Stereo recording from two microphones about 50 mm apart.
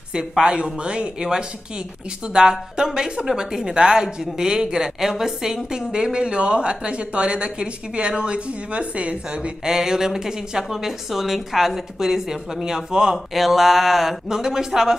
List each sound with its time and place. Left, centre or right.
0.4 s a woman's voice: centre
9.7 s a woman's voice: centre